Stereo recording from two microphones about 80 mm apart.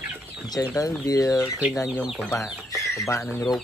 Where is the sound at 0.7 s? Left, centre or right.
Left.